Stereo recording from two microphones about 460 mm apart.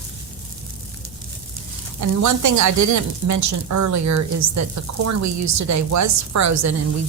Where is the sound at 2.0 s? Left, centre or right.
Right.